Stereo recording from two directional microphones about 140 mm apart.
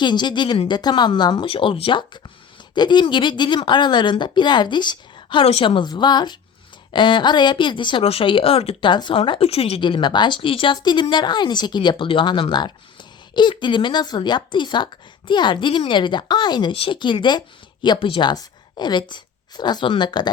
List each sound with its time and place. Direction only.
0.0 s a woman's voice: 30° left (ahead or behind)